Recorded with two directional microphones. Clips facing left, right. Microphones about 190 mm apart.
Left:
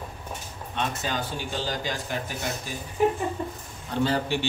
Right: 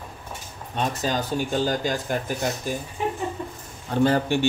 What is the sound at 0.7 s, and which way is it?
Speech, 45° right (ahead or behind).